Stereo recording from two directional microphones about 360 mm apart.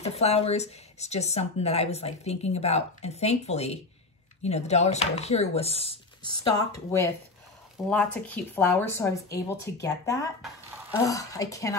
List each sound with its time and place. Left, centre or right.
0.0 s speech: centre
7.9 s speech: centre